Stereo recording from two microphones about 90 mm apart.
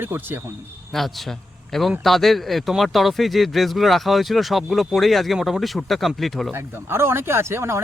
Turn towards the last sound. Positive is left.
turn(degrees=-30)  # may be behind; listen again after turning